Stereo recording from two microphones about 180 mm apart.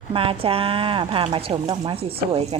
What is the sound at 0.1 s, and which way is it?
Speech, 30° right (ahead or behind).